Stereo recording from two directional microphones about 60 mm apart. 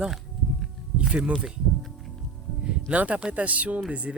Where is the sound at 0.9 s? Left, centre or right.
Centre.